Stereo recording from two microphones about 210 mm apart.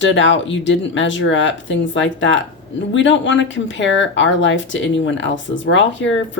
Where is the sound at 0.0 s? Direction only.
60° left (ahead or behind).